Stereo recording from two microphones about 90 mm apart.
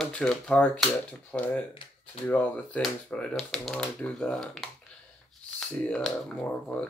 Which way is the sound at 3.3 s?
Centre (ahead or behind).